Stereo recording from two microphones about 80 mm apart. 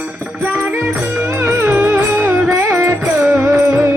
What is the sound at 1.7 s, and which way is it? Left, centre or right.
Music, right.